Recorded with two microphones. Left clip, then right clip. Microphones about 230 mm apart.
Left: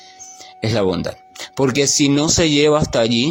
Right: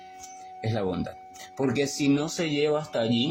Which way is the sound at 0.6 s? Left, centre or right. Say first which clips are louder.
Left 11 dB; left.